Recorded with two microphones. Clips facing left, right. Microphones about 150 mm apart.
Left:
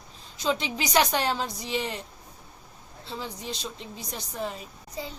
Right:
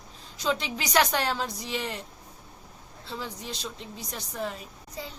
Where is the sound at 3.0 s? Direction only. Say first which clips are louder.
Left 1 dB; 25° left (ahead or behind).